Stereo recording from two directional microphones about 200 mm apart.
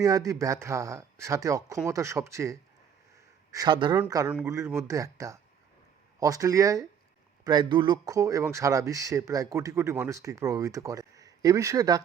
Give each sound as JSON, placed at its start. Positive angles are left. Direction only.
{"t": 0.0, "sound": "speech", "side_deg": -15}